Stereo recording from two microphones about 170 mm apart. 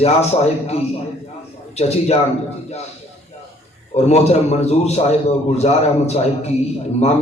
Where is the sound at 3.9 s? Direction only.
40° left (ahead or behind).